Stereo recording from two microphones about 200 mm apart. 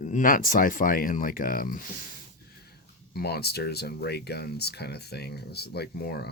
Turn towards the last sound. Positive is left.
turn(degrees=50)  # may be behind; listen again after turning